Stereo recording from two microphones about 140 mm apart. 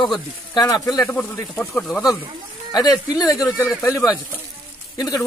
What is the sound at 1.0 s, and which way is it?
Speech, 10° left (ahead or behind).